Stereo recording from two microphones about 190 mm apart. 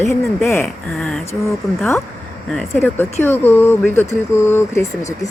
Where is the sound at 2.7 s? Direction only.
15° left (ahead or behind).